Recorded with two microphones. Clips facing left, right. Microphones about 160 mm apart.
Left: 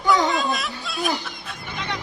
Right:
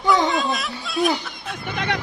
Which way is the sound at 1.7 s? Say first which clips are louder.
Right 5 dB; 60° right (ahead or behind).